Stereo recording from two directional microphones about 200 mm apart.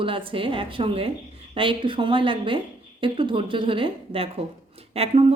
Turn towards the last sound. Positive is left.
turn(degrees=-30)  # may be behind; listen again after turning